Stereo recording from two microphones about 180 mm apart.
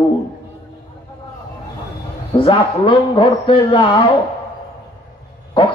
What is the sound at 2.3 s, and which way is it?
Mantra, 30° left (ahead or behind).